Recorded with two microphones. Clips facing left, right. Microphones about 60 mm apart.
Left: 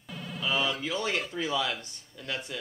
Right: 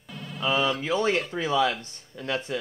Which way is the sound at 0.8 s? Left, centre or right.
Right.